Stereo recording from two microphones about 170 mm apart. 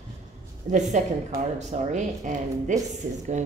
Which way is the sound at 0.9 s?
45° right (ahead or behind).